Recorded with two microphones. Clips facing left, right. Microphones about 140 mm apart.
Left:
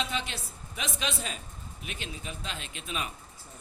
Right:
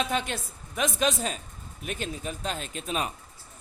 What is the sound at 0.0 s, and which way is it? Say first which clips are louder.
A man's voice: right 5 dB; 50° right (ahead or behind).